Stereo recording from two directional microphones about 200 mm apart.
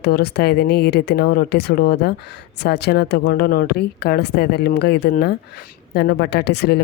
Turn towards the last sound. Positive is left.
turn(degrees=55)  # may be behind; listen again after turning